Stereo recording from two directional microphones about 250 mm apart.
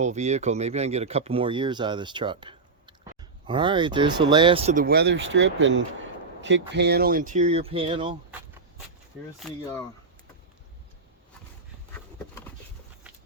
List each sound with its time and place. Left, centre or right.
0.0 s speech: right
9.4 s speech: centre